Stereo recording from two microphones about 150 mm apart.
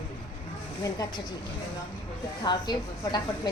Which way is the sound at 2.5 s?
30° left (ahead or behind).